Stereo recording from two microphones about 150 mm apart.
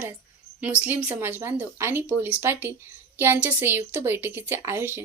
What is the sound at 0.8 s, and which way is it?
A woman's voice, 10° right (ahead or behind).